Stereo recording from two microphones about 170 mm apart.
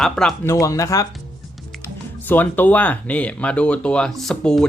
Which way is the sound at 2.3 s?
10° left (ahead or behind).